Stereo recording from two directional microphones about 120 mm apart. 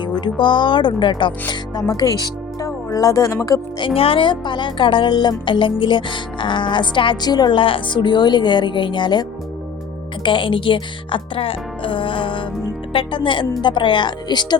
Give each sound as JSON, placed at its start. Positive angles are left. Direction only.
{"t": 0.0, "sound": "speech", "side_deg": 40}
{"t": 3.8, "sound": "speech", "side_deg": 50}
{"t": 10.2, "sound": "speech", "side_deg": 45}